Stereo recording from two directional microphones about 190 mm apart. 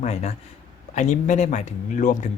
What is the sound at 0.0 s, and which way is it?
Speech, 35° left (ahead or behind).